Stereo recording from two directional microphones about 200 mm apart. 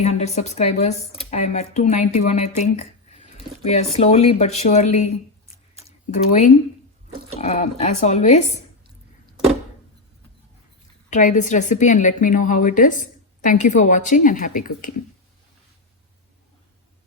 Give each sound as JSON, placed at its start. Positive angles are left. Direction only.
{"t": 0.0, "sound": "a woman's voice", "side_deg": 35}
{"t": 11.1, "sound": "a woman's voice", "side_deg": 40}